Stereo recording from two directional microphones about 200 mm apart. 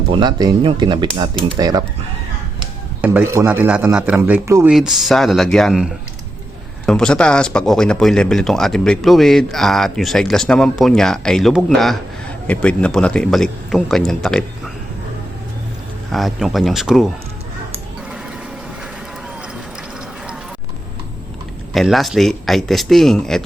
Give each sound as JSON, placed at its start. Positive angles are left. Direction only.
{"t": 0.1, "sound": "speech", "side_deg": -20}
{"t": 3.0, "sound": "a man's voice", "side_deg": -10}
{"t": 16.1, "sound": "speech", "side_deg": 0}
{"t": 21.7, "sound": "speech", "side_deg": 0}